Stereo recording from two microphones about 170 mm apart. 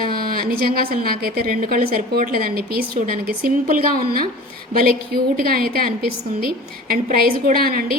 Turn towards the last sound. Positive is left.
turn(degrees=-60)  # may be behind; listen again after turning